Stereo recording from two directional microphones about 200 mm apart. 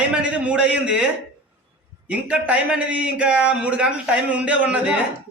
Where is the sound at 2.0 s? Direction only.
5° right (ahead or behind).